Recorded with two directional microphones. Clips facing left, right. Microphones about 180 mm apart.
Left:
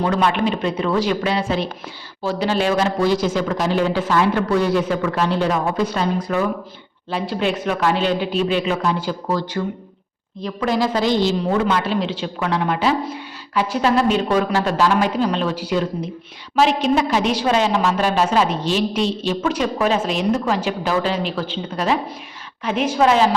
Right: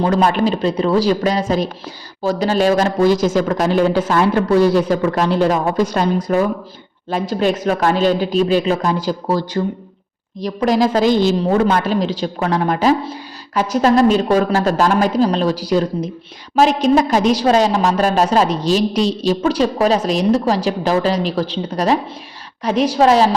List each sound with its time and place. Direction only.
0.0 s a woman's voice: 40° right (ahead or behind)